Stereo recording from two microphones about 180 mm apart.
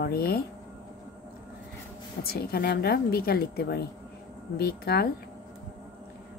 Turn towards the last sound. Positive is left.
turn(degrees=60)  # may be behind; listen again after turning